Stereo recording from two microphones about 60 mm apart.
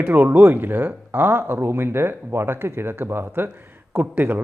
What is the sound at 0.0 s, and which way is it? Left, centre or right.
Speech, right.